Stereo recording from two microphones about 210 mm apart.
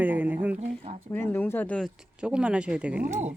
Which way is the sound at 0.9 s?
30° right (ahead or behind).